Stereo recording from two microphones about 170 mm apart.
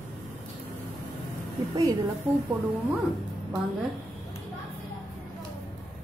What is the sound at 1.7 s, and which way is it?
Speech, 20° right (ahead or behind).